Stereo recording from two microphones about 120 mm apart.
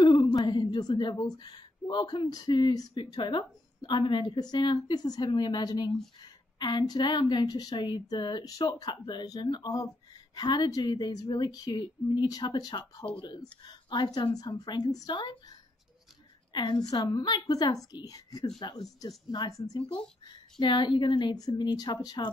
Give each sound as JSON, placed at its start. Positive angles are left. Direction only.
{"t": 0.0, "sound": "a woman's voice", "side_deg": 40}
{"t": 16.5, "sound": "a woman's voice", "side_deg": 35}